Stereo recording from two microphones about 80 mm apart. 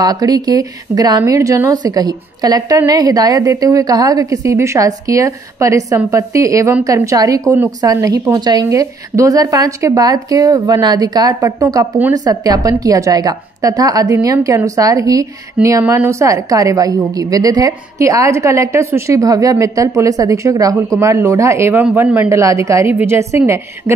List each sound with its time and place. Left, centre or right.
0.0 s a woman's voice: right
1.2 s a woman's voice: right
8.4 s a woman's voice: right
8.6 s speech: right
17.9 s a woman's voice: right
22.3 s a woman's voice: right